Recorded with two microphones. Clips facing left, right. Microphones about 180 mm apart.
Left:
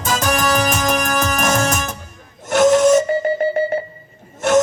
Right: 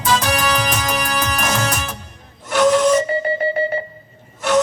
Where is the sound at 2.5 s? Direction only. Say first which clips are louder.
Left 2 dB; 45° left (ahead or behind).